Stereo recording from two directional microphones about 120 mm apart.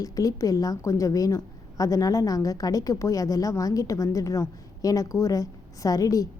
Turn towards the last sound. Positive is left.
turn(degrees=30)  # may be behind; listen again after turning